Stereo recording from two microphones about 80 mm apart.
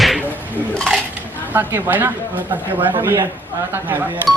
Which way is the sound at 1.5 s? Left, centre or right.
Right.